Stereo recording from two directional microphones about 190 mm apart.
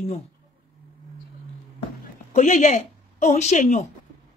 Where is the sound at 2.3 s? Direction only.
40° left (ahead or behind).